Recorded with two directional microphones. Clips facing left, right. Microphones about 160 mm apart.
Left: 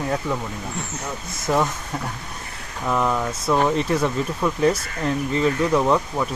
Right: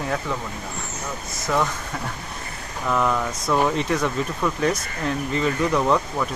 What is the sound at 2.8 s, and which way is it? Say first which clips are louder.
Speech: even; 10° left (ahead or behind).